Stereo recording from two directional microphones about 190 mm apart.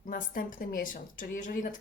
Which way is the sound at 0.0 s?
45° left (ahead or behind).